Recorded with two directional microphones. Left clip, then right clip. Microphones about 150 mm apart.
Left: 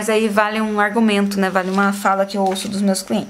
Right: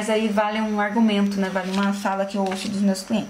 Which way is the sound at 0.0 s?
35° left (ahead or behind).